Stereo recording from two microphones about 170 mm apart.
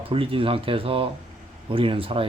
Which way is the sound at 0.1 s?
35° right (ahead or behind).